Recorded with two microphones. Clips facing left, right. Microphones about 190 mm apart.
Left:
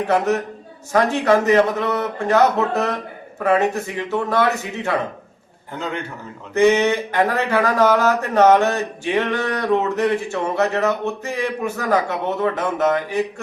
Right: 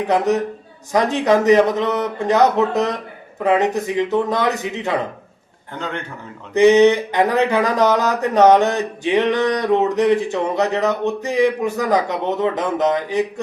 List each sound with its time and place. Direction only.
0.9 s speech: 15° right (ahead or behind)
5.8 s a man's voice: 5° left (ahead or behind)
6.5 s speech: 20° right (ahead or behind)